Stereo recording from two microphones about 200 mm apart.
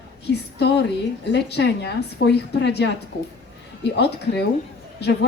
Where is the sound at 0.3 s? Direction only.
55° left (ahead or behind).